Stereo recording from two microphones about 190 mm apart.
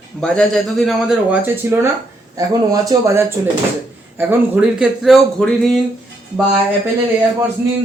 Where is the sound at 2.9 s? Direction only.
15° right (ahead or behind); by 5.8 s centre (ahead or behind).